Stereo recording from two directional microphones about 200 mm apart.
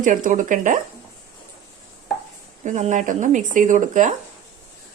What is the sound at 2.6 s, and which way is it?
Speech, 35° right (ahead or behind).